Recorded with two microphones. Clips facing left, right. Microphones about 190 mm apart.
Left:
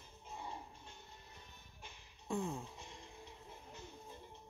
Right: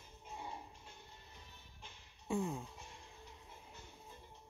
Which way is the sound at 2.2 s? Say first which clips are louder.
Right 2 dB; 5° right (ahead or behind).